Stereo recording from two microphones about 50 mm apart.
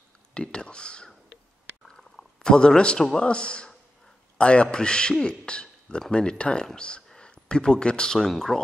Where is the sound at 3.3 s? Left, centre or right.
Left.